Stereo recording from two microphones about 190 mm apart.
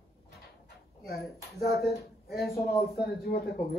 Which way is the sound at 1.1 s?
55° left (ahead or behind).